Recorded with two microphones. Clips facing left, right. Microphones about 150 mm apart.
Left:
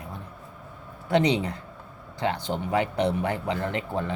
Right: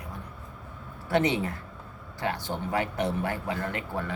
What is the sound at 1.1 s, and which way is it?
Speech, 20° left (ahead or behind).